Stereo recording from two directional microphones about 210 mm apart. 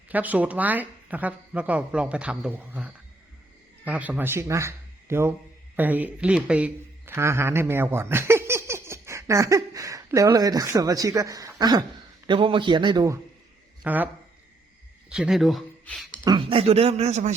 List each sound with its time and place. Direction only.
0.1 s a man's voice: 5° right (ahead or behind)
13.8 s speech: 10° right (ahead or behind)
15.1 s speech: centre (ahead or behind)
16.2 s speech: 25° right (ahead or behind)